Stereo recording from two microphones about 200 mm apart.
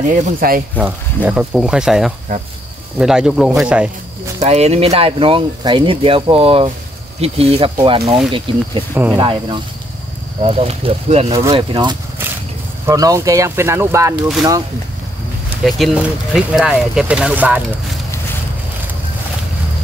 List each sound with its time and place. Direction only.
0.1 s speech: 45° right (ahead or behind)
0.7 s speech: 5° right (ahead or behind)
4.4 s speech: 30° right (ahead or behind)
11.3 s speech: 20° right (ahead or behind)
15.6 s speech: centre (ahead or behind)